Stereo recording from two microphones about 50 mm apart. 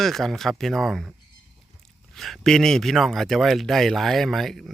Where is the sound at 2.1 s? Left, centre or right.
Centre.